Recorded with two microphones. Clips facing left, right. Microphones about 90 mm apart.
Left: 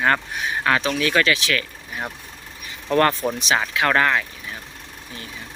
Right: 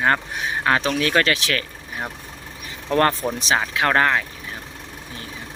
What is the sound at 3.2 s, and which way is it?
Speech, 15° right (ahead or behind).